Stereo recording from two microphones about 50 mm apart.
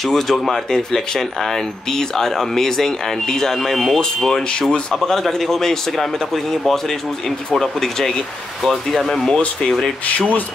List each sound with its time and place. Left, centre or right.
0.0 s speech: centre
4.6 s speech: centre
4.9 s speech: centre